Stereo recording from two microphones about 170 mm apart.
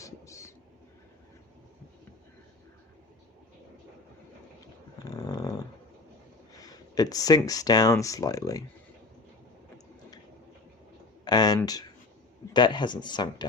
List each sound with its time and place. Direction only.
0.0 s a sound: 15° left (ahead or behind)
5.0 s dog: 20° left (ahead or behind)
6.5 s speech: 20° left (ahead or behind)
11.3 s speech: 25° left (ahead or behind)